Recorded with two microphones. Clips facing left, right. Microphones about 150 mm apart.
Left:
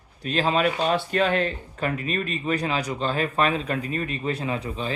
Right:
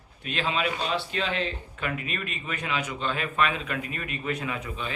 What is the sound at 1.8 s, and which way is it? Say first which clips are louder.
Speech: left 6 dB; 35° left (ahead or behind).